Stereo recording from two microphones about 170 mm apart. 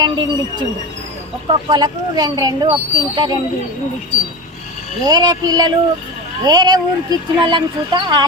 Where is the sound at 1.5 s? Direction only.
25° right (ahead or behind).